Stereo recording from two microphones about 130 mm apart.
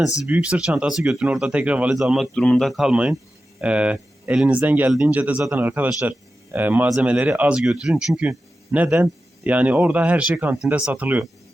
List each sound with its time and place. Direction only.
0.3 s speech: 10° right (ahead or behind)